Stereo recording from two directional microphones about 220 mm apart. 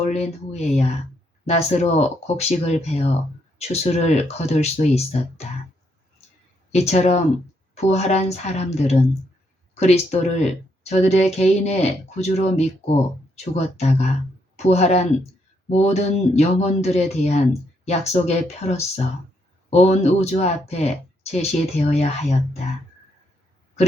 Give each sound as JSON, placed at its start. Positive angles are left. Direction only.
{"t": 0.0, "sound": "a woman's voice", "side_deg": 30}
{"t": 6.7, "sound": "a woman's voice", "side_deg": 30}
{"t": 19.7, "sound": "a woman's voice", "side_deg": 30}